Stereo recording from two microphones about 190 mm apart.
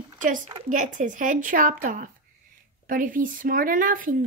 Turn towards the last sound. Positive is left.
turn(degrees=-45)  # may be behind; listen again after turning